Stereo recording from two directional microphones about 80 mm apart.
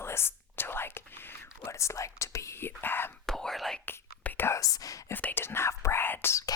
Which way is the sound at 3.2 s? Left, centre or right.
Centre.